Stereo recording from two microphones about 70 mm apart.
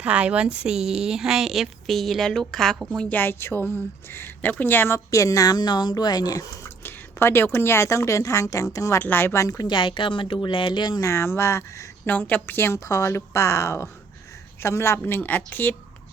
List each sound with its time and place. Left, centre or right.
0.0 s speech: centre
3.0 s speech: left
5.1 s a woman's voice: left
6.8 s a woman's voice: left
9.0 s speech: left
10.3 s speech: left
11.0 s speech: left
12.0 s a woman's voice: left
15.0 s speech: left